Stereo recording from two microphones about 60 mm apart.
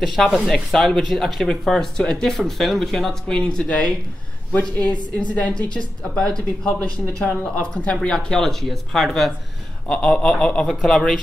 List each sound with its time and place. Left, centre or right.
0.0 s a woman's voice: centre
9.8 s a woman's voice: centre
10.7 s speech: centre